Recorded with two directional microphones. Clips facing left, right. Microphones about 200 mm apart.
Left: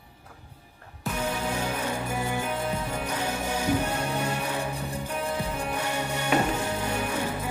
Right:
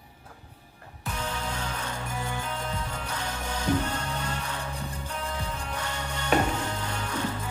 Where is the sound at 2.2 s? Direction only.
10° left (ahead or behind).